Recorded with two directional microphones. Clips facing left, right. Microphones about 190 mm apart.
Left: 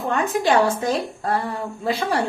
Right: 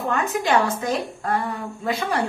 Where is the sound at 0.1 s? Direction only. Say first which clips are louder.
Left 2 dB; 30° left (ahead or behind).